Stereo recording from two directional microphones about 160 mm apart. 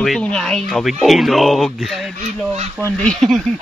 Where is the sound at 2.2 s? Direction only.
45° right (ahead or behind).